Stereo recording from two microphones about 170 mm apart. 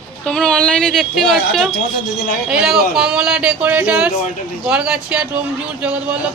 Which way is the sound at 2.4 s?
5° right (ahead or behind).